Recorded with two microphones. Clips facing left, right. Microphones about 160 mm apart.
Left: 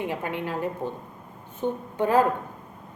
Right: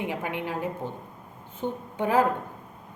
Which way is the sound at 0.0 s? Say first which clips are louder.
Left 1 dB; 15° right (ahead or behind).